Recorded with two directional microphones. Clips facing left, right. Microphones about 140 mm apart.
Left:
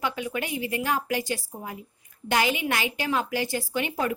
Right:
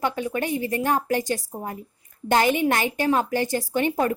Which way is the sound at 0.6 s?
45° right (ahead or behind).